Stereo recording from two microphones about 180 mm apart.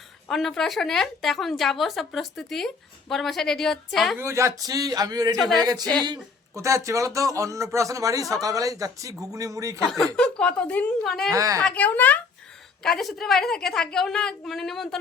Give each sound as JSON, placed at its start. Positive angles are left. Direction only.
{"t": 0.3, "sound": "a woman's voice", "side_deg": 0}
{"t": 4.2, "sound": "a man's voice", "side_deg": -15}
{"t": 9.8, "sound": "a woman's voice", "side_deg": 0}
{"t": 11.3, "sound": "speech", "side_deg": -20}
{"t": 11.6, "sound": "a woman's voice", "side_deg": 10}